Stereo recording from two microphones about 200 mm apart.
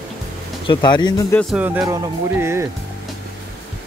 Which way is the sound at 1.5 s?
10° right (ahead or behind).